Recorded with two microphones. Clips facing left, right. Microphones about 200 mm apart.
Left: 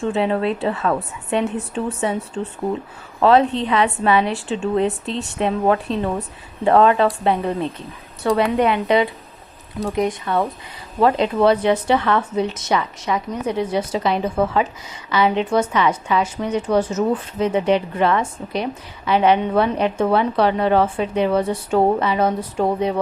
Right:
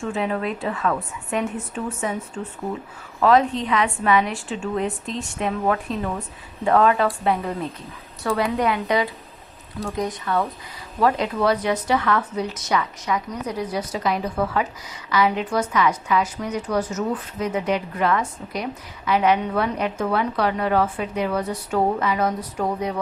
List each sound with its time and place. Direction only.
0.0 s a woman's voice: 30° left (ahead or behind)